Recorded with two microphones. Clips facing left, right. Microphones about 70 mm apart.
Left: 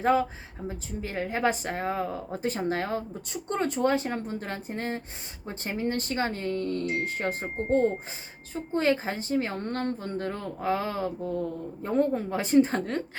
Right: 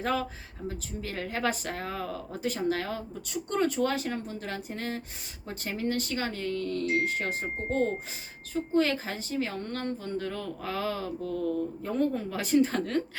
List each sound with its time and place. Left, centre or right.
0.0 s speech: left
8.5 s speech: left